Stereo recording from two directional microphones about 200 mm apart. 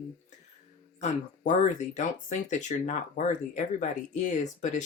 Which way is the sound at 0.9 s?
35° left (ahead or behind).